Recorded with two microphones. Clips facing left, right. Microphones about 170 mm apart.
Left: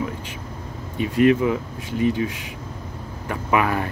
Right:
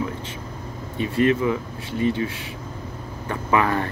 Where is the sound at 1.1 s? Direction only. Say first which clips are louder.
Left 3 dB; 20° left (ahead or behind).